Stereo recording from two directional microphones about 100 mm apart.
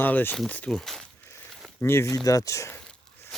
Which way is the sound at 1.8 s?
25° left (ahead or behind).